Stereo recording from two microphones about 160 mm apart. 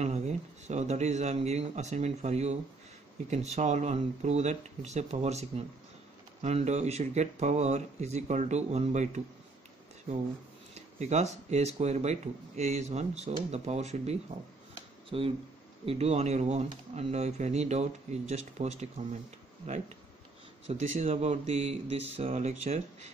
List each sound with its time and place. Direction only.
0.0 s a man's voice: 45° right (ahead or behind)
10.7 s speech: 45° right (ahead or behind)
20.8 s speech: 45° right (ahead or behind)